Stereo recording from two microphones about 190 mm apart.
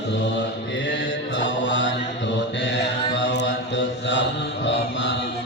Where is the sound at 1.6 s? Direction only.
75° left (ahead or behind).